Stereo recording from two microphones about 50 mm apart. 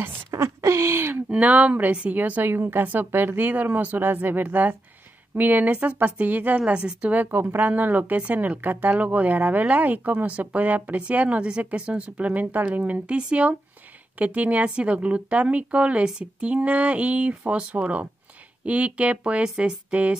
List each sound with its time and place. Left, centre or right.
0.3 s a sound: right
1.3 s speech: right
6.6 s speech: right